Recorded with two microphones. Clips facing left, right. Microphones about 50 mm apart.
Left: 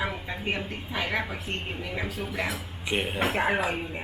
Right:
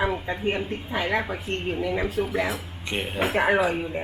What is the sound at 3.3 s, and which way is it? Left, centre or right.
Speech, right.